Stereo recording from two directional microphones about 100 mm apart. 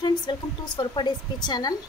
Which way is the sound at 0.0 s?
50° left (ahead or behind).